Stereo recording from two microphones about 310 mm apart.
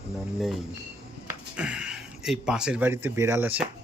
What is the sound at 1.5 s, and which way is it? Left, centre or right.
Speech, centre.